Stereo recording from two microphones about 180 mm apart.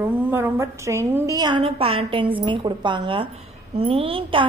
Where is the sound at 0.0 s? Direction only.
10° right (ahead or behind).